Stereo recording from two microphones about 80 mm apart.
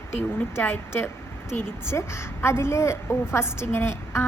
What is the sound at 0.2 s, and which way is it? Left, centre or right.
A woman's voice, left.